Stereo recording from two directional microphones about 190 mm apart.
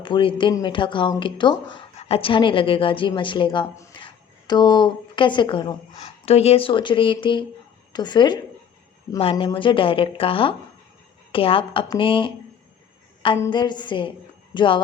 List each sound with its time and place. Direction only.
0.0 s speech: 25° left (ahead or behind)
13.4 s speech: 25° left (ahead or behind)